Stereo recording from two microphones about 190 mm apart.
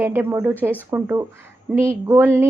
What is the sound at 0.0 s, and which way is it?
A woman's voice, 10° right (ahead or behind).